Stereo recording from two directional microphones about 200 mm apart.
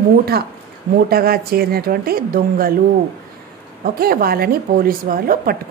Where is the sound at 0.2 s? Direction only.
50° right (ahead or behind).